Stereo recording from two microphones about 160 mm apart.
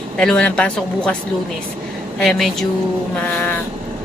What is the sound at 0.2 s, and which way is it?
Speech, 5° left (ahead or behind).